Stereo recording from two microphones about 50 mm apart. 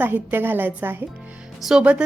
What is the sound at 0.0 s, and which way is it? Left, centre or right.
A woman's voice, right.